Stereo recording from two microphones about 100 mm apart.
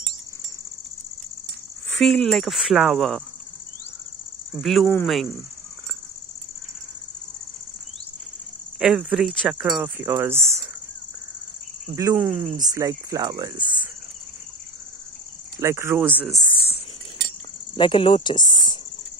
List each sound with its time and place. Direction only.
2.0 s speech: 5° left (ahead or behind)
4.6 s speech: 5° left (ahead or behind)
8.7 s speech: 5° right (ahead or behind); by 10.6 s 25° right (ahead or behind)
11.9 s speech: 35° right (ahead or behind)
12.2 s speech: 20° right (ahead or behind)
12.7 s speech: 40° right (ahead or behind)
15.6 s speech: 25° right (ahead or behind)
16.0 s speech: 15° right (ahead or behind)
16.5 s a sound: 75° left (ahead or behind)
17.7 s speech: 60° left (ahead or behind)
18.3 s speech: 45° left (ahead or behind)